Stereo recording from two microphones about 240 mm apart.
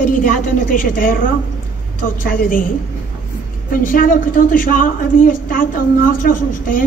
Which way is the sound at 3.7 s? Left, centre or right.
Left.